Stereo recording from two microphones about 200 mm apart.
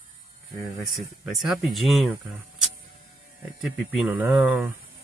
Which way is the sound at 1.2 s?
Centre (ahead or behind).